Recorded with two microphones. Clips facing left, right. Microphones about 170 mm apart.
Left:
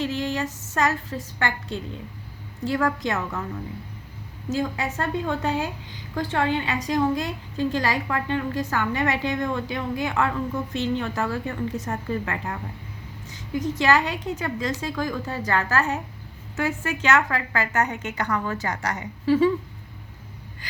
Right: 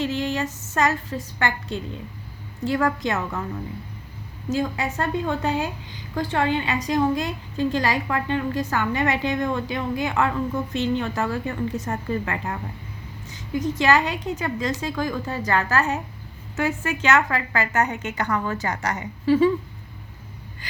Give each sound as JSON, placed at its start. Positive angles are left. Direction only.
{"t": 0.0, "sound": "a woman's voice", "side_deg": -25}
{"t": 4.4, "sound": "a woman's voice", "side_deg": -15}